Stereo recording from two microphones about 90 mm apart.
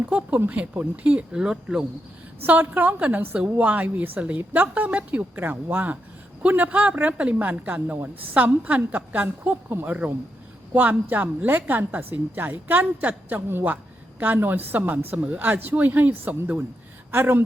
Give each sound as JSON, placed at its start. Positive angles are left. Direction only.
{"t": 0.0, "sound": "a woman's voice", "side_deg": -15}
{"t": 2.5, "sound": "a woman's voice", "side_deg": -20}
{"t": 11.1, "sound": "a woman's voice", "side_deg": -20}